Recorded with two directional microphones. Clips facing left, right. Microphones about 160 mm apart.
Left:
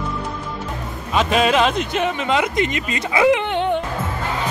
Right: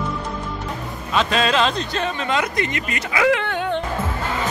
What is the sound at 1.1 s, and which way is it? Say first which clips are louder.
Speech: left 2 dB; 15° left (ahead or behind).